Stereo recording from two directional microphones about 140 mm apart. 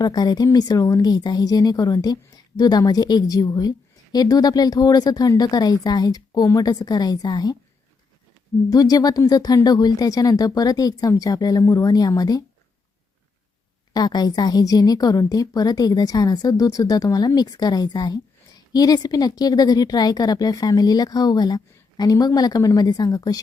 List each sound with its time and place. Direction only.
0.0 s speech: 30° left (ahead or behind)
8.7 s speech: 25° left (ahead or behind)
13.9 s speech: 30° left (ahead or behind)